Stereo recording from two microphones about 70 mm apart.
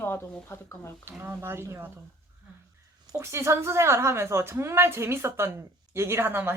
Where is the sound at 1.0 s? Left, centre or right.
Right.